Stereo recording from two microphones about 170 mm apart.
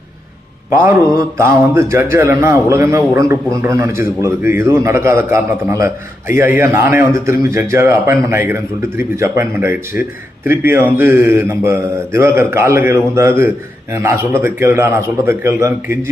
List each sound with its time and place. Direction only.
0.8 s a man's voice: 15° right (ahead or behind)